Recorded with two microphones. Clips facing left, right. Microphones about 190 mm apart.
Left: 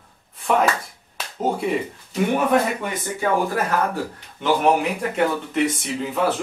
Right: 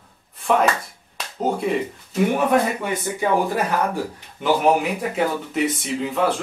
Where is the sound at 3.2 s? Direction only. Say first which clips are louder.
Even; 15° right (ahead or behind).